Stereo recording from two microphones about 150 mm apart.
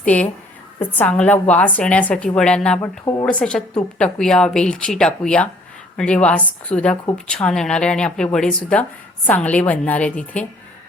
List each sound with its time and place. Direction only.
0.0 s speech: 10° left (ahead or behind)
3.0 s speech: 25° left (ahead or behind)
3.2 s speech: 5° left (ahead or behind)